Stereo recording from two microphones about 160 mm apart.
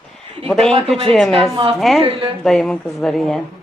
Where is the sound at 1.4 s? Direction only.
35° right (ahead or behind).